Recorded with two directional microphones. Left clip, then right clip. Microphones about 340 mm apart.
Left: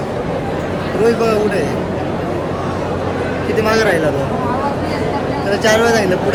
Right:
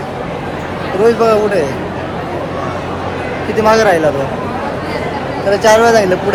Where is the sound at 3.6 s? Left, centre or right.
Centre.